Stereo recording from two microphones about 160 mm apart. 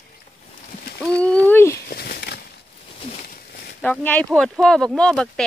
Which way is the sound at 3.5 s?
85° left.